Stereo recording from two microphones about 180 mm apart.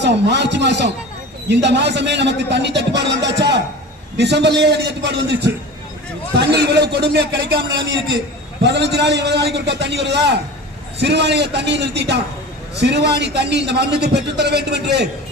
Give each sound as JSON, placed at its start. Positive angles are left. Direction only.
{"t": 0.0, "sound": "a man's voice", "side_deg": -70}
{"t": 8.6, "sound": "a man's voice", "side_deg": -70}